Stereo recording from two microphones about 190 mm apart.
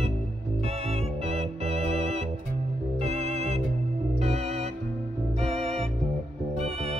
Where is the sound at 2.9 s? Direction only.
35° right (ahead or behind).